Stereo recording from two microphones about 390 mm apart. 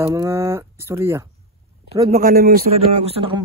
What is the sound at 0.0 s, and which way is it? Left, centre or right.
Speech, centre.